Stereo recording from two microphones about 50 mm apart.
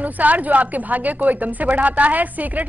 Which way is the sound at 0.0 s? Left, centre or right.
Right.